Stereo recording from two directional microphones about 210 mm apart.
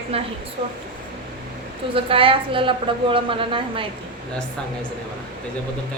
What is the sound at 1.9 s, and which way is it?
A woman's voice, 25° right (ahead or behind).